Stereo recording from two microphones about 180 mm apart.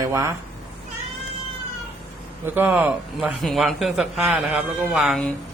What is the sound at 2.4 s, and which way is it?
A man's voice, 10° right (ahead or behind).